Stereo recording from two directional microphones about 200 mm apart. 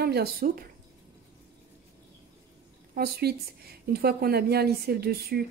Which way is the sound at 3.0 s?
50° right (ahead or behind).